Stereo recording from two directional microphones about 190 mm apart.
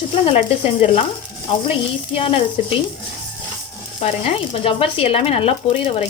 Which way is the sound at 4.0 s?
30° left (ahead or behind).